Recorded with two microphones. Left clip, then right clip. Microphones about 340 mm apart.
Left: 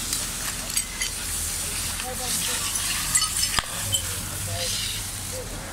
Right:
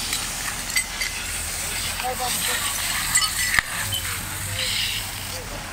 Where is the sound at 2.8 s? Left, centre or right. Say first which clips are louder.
Right 3 dB; centre.